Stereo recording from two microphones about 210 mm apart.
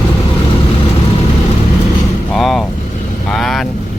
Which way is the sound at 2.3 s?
Centre (ahead or behind).